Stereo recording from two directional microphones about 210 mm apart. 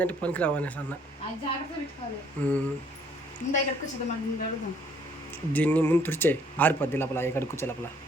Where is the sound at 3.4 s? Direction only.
35° left (ahead or behind).